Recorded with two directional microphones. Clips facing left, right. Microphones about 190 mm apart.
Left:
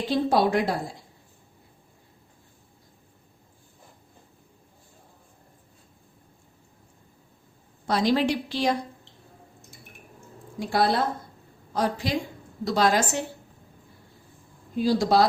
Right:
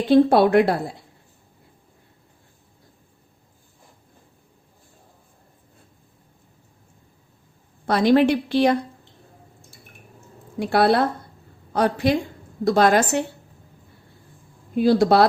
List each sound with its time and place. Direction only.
0.1 s a woman's voice: 60° right (ahead or behind)
7.9 s a woman's voice: 60° right (ahead or behind)
10.6 s a woman's voice: 65° right (ahead or behind)
14.8 s a woman's voice: 60° right (ahead or behind)